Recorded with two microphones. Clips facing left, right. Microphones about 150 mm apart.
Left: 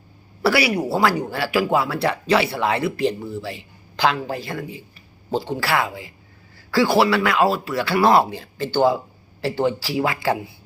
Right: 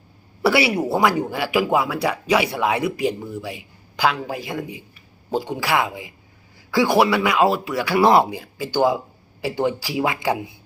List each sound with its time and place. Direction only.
0.4 s speech: 20° right (ahead or behind)